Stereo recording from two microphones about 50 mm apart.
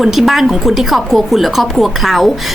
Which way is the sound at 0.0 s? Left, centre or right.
Centre.